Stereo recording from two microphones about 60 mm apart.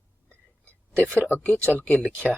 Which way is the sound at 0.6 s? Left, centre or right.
Left.